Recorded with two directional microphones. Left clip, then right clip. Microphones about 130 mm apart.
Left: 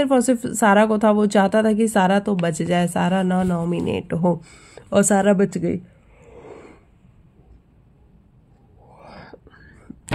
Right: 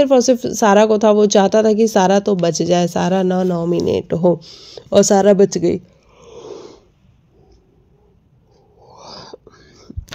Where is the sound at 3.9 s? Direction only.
35° right (ahead or behind).